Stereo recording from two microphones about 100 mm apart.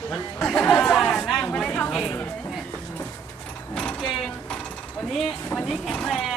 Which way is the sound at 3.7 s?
5° left (ahead or behind).